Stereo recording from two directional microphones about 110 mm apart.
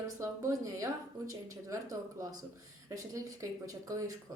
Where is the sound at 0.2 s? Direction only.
30° right (ahead or behind).